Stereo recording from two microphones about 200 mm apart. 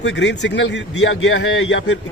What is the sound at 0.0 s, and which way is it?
A man's voice, 60° left (ahead or behind).